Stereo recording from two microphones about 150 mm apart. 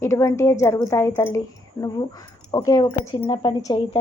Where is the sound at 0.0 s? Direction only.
20° left (ahead or behind).